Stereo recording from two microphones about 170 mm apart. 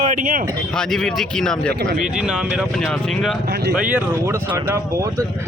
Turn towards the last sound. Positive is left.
turn(degrees=-15)  # may be behind; listen again after turning